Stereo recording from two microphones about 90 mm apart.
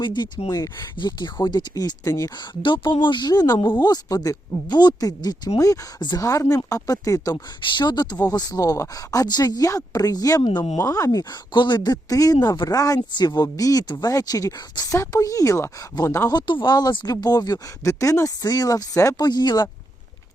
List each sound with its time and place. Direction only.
0.0 s speech: 60° left (ahead or behind)
0.4 s speech: 40° left (ahead or behind)
0.9 s speech: 55° left (ahead or behind)
2.6 s speech: 60° left (ahead or behind); by 5.8 s 40° left (ahead or behind)
6.0 s speech: 55° left (ahead or behind)
6.2 s speech: 40° left (ahead or behind)
7.6 s speech: 55° left (ahead or behind); by 16.2 s 30° left (ahead or behind)
16.3 s speech: 60° left (ahead or behind)